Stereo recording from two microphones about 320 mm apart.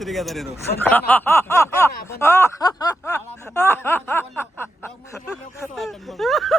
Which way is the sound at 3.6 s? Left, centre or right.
Centre.